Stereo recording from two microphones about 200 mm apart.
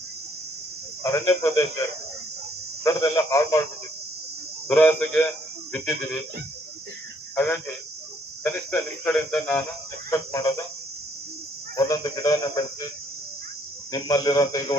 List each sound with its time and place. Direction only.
1.0 s a man's voice: 15° left (ahead or behind)
2.8 s a man's voice: 15° left (ahead or behind)
4.7 s a man's voice: 10° left (ahead or behind)
7.3 s a man's voice: 10° left (ahead or behind)
11.8 s a man's voice: 20° left (ahead or behind)
13.9 s a man's voice: 20° left (ahead or behind)